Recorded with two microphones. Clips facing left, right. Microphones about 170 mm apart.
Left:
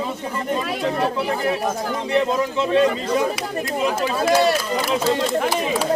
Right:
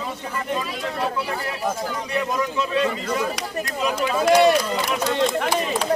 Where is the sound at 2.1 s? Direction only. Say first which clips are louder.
Left 5 dB; 25° left (ahead or behind).